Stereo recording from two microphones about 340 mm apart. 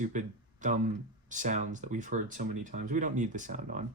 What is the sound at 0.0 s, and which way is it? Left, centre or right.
Speech, right.